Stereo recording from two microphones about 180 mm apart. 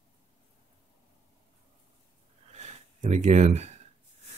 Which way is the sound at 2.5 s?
40° right (ahead or behind).